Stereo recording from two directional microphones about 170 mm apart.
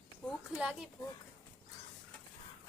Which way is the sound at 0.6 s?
5° right (ahead or behind).